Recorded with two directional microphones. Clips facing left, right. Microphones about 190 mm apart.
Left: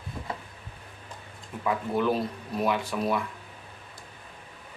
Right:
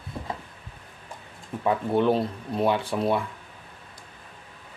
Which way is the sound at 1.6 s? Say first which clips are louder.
Right 4 dB; 30° right (ahead or behind).